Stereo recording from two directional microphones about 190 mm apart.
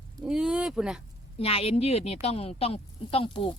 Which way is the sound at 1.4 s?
30° left (ahead or behind).